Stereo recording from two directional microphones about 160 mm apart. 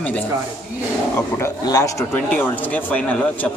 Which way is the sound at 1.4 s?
20° left (ahead or behind).